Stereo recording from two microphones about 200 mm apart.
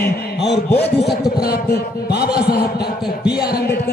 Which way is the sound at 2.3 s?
50° left (ahead or behind).